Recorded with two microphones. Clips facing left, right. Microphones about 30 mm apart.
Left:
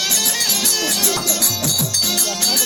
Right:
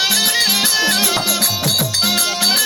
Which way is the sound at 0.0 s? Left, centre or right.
Right.